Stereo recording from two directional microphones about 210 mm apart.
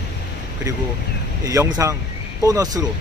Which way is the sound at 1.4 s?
15° right (ahead or behind).